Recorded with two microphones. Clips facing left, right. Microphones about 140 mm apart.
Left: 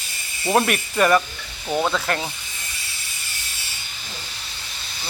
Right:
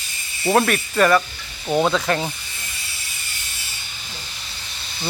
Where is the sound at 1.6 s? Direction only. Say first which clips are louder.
Right 3 dB; 5° right (ahead or behind).